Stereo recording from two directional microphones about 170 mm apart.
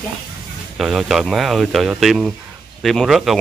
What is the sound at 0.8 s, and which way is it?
Speech, centre (ahead or behind).